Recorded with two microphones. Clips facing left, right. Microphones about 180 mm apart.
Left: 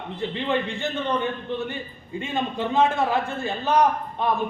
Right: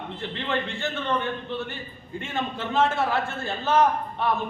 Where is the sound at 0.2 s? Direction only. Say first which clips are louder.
Left 4 dB; 15° left (ahead or behind).